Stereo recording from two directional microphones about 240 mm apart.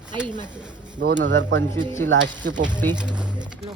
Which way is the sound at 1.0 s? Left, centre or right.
Right.